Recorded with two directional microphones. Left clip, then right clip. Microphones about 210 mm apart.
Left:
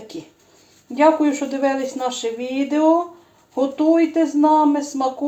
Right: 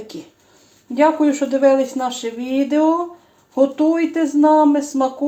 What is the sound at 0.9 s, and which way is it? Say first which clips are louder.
Speech: even; 25° right (ahead or behind).